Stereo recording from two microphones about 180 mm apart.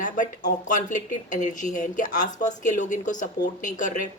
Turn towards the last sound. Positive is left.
turn(degrees=45)  # may be behind; listen again after turning